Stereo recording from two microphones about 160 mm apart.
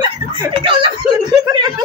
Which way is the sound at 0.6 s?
30° right (ahead or behind).